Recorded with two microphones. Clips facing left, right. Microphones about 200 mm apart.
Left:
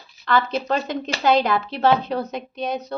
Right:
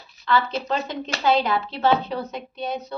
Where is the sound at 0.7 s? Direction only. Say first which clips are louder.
Left 3 dB; 45° left (ahead or behind).